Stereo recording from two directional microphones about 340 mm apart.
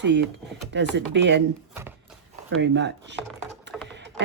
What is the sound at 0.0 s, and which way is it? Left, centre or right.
Speech, right.